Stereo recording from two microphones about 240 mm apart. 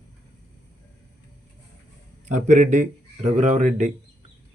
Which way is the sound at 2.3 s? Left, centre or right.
Right.